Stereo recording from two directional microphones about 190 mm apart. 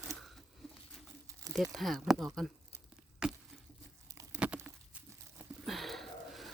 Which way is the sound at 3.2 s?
5° right (ahead or behind).